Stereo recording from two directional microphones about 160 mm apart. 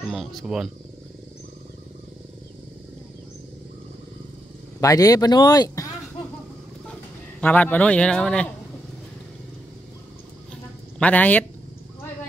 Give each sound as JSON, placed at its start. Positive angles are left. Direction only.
{"t": 0.1, "sound": "speech", "side_deg": 0}
{"t": 4.7, "sound": "speech", "side_deg": 20}
{"t": 7.3, "sound": "a man's voice", "side_deg": 10}
{"t": 11.0, "sound": "a man's voice", "side_deg": 10}